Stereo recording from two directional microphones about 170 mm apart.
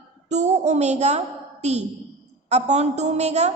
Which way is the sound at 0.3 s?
40° right (ahead or behind).